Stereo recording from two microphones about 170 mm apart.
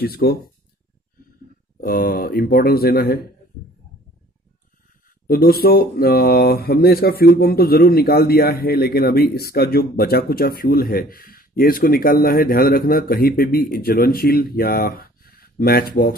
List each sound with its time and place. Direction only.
0.0 s speech: 65° left (ahead or behind)
1.8 s speech: 55° left (ahead or behind)
5.2 s speech: 60° left (ahead or behind)